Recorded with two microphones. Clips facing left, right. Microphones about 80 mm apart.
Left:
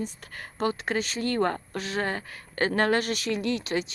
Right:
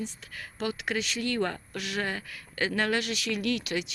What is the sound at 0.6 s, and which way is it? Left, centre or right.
Speech, left.